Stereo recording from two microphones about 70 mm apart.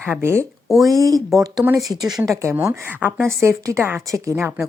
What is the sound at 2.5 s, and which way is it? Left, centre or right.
Speech, right.